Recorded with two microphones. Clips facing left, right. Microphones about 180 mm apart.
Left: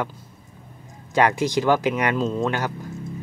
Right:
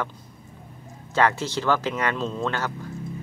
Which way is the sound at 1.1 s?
15° left (ahead or behind).